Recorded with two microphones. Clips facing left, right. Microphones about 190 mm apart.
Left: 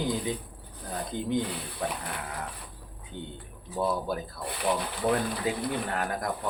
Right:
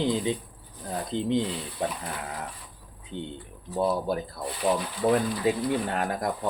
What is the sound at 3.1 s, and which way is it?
Speech, 25° right (ahead or behind).